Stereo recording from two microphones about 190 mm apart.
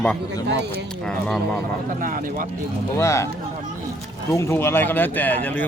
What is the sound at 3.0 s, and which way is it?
Speech, 15° left (ahead or behind).